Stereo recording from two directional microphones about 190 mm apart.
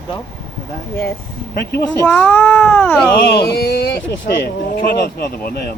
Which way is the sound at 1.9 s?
5° left (ahead or behind).